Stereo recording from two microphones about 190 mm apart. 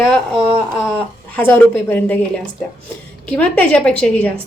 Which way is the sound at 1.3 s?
10° left (ahead or behind).